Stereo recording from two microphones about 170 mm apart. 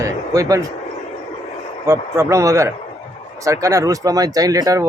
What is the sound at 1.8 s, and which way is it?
Speech, 15° right (ahead or behind).